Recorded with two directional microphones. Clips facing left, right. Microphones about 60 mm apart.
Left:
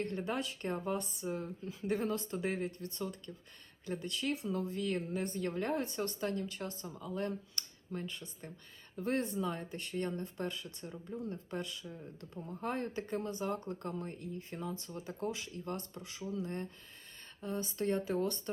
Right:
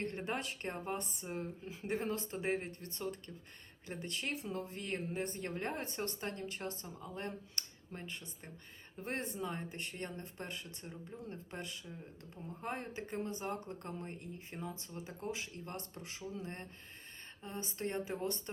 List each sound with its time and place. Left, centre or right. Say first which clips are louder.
0.0 s speech: left 3 dB; right
12.4 s speech: left 4 dB; centre
12.6 s speech: left 4 dB; centre